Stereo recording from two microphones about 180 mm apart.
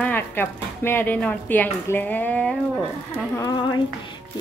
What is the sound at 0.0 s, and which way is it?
Speech, 10° left (ahead or behind).